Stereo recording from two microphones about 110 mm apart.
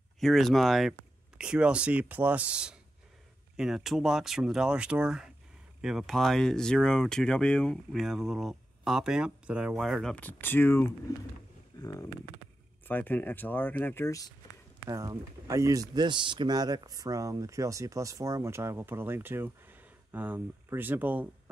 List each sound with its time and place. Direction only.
0.2 s speech: centre (ahead or behind)
10.1 s speech: 15° left (ahead or behind)
11.7 s a sound: 40° left (ahead or behind)
12.8 s speech: 15° left (ahead or behind)
14.9 s speech: 30° right (ahead or behind); by 21.3 s 15° right (ahead or behind)